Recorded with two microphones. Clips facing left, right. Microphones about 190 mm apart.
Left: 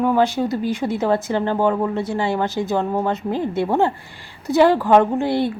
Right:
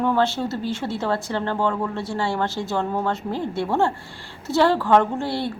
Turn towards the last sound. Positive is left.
turn(degrees=20)  # may be behind; listen again after turning